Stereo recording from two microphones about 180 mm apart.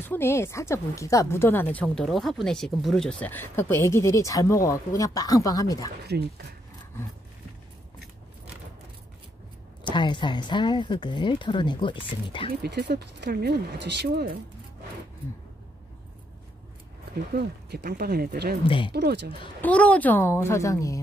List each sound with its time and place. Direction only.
0.0 s speech: 10° left (ahead or behind)
6.0 s speech: 60° right (ahead or behind)
9.8 s a woman's voice: 25° left (ahead or behind)
12.6 s speech: 70° right (ahead or behind)
17.3 s speech: 65° right (ahead or behind)
19.6 s speech: 5° left (ahead or behind)